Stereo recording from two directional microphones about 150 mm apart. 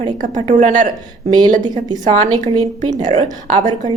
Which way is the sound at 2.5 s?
50° right (ahead or behind).